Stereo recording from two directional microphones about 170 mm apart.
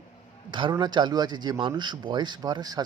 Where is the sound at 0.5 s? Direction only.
25° right (ahead or behind).